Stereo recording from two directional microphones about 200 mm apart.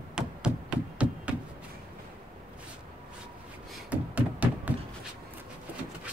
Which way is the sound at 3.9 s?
5° right (ahead or behind).